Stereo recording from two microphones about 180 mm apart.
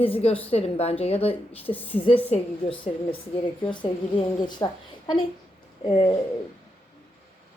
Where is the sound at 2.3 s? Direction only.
30° left (ahead or behind).